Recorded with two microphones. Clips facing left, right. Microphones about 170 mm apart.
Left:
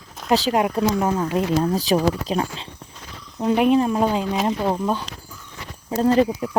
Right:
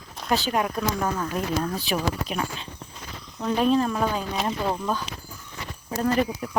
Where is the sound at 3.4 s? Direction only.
20° left (ahead or behind).